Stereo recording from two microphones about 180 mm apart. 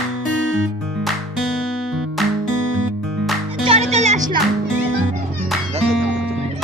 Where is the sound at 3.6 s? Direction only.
35° right (ahead or behind).